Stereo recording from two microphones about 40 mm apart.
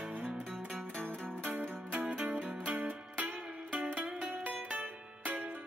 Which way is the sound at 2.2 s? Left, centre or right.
Right.